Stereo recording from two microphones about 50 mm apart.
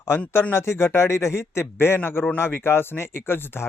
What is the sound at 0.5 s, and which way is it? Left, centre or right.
Speech, left.